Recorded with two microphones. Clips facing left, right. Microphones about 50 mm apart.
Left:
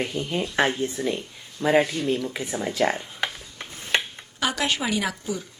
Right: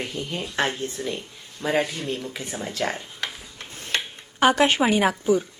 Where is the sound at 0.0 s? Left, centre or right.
Centre.